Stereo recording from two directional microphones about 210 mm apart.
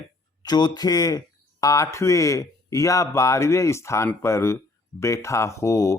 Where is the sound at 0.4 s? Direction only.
20° left (ahead or behind).